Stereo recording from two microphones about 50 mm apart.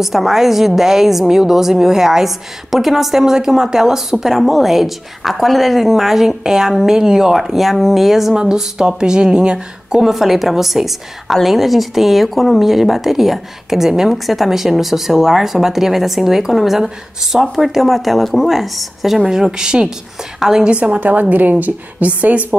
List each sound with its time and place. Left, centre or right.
0.0 s a woman's voice: centre
20.6 s a woman's voice: right